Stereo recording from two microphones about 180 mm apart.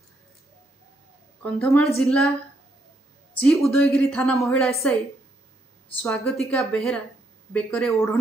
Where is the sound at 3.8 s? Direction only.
5° left (ahead or behind).